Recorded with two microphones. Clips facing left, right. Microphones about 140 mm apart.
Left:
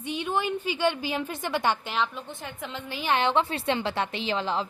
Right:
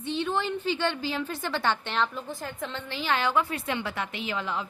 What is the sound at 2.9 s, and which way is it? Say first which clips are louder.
A woman's voice: left 2 dB; 20° left (ahead or behind).